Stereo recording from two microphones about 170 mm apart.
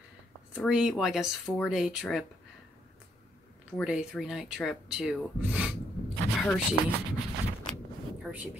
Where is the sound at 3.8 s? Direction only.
5° right (ahead or behind).